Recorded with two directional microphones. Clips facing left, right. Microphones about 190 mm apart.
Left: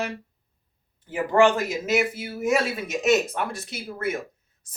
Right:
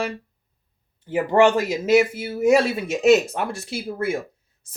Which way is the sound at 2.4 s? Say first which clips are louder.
Right 6 dB; 30° right (ahead or behind).